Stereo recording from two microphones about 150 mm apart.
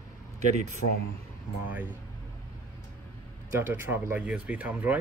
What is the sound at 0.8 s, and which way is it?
Speech, 90° left.